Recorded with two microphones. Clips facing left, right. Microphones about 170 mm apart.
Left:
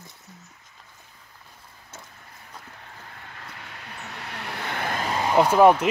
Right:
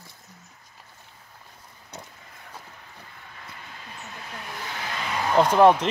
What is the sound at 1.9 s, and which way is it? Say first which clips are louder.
Vehicle: right 4 dB; 20° right (ahead or behind).